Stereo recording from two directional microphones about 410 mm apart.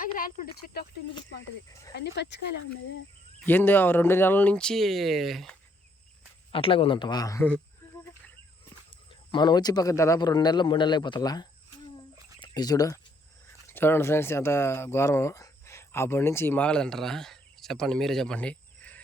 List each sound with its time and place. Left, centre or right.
1.9 s speech: left
3.4 s speech: centre
6.5 s speech: centre
8.9 s speech: centre